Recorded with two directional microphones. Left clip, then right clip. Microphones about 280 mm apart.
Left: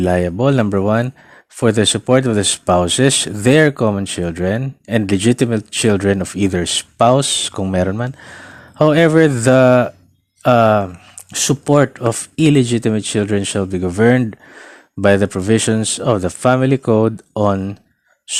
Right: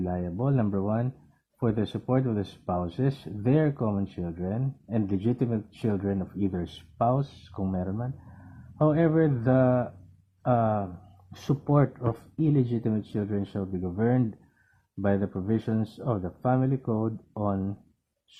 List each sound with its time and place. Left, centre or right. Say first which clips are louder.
0.0 s speech: left 17 dB; left
11.3 s speech: left 14 dB; left
16.0 s speech: left 14 dB; left